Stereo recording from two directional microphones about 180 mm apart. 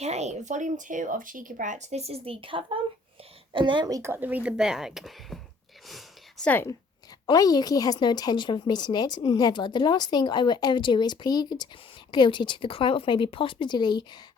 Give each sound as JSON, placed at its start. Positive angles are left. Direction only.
{"t": 0.0, "sound": "speech", "side_deg": -35}
{"t": 5.9, "sound": "a sound", "side_deg": 0}
{"t": 7.3, "sound": "a woman's voice", "side_deg": 20}